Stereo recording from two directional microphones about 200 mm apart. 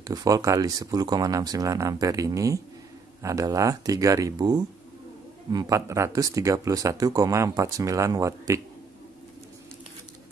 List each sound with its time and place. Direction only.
0.0 s speech: 20° right (ahead or behind)